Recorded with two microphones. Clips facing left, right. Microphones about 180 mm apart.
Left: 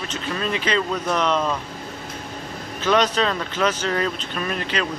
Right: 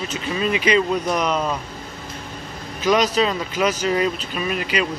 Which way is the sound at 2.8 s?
10° right (ahead or behind).